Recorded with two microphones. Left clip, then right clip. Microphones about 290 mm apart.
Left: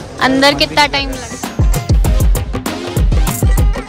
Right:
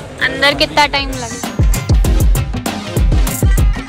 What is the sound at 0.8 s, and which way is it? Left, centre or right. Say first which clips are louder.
Speech: even; centre.